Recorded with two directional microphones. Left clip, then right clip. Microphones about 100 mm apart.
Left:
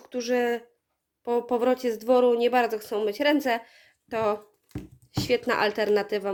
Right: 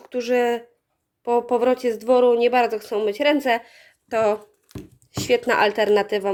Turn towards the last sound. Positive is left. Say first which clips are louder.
# right 5 dB
turn(degrees=-20)  # may be behind; listen again after turning